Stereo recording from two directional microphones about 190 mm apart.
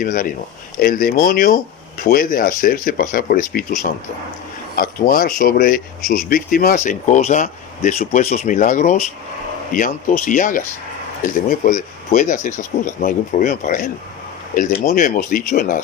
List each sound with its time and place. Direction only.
0.0 s speech: 45° left (ahead or behind)